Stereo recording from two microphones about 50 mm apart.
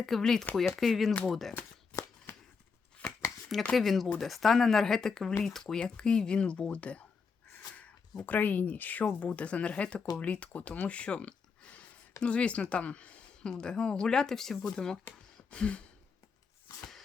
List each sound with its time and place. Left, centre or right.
0.0 s speech: centre
3.0 s chopping: left
3.8 s speech: centre; by 7.0 s left
8.2 s speech: left
10.8 s a sound: left
12.2 s speech: left; by 14.8 s centre
15.1 s speech: left
15.4 s a sound: left